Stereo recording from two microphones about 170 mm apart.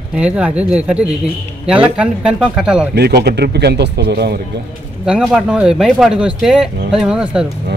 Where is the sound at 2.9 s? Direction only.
75° right (ahead or behind).